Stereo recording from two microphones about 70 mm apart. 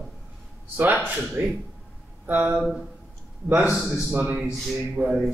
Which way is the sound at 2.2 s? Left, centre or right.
Right.